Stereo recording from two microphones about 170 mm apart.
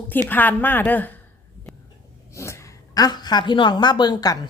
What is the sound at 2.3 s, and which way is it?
A woman's voice, 15° left (ahead or behind).